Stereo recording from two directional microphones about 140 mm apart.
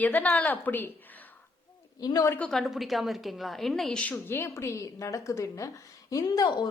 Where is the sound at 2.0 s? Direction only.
25° left (ahead or behind).